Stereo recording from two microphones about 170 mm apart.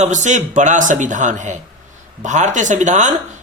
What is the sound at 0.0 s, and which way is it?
A man's voice, 45° right (ahead or behind).